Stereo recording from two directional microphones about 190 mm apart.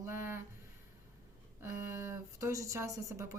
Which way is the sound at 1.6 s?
15° right (ahead or behind).